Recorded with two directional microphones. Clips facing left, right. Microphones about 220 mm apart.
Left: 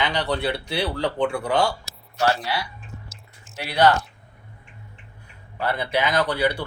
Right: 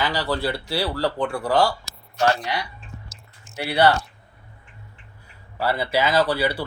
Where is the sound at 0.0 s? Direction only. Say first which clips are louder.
Even; centre (ahead or behind).